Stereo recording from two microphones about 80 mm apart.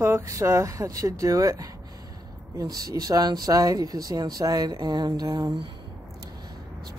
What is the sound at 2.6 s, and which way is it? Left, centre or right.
Speech, right.